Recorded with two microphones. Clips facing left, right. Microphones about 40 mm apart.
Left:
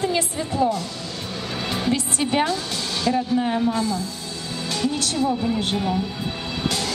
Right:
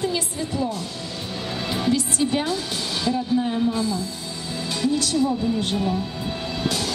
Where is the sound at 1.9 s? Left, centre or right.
Left.